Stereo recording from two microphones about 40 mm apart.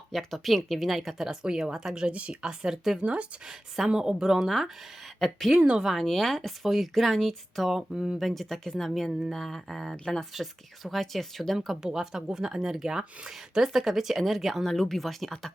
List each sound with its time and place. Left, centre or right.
0.1 s speech: centre
2.0 s speech: right
2.5 s a woman's voice: centre
3.0 s speech: right
3.8 s a woman's voice: right; by 4.7 s centre
5.2 s speech: centre
5.5 s speech: right
6.0 s speech: centre
6.6 s speech: centre
7.9 s a woman's voice: centre
8.2 s speech: centre
11.9 s a woman's voice: centre
14.6 s speech: centre